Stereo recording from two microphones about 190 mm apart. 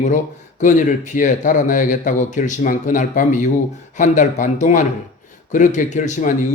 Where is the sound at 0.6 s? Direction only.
40° left (ahead or behind).